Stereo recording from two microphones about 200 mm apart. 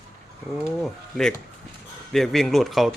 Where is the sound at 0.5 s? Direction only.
Centre (ahead or behind).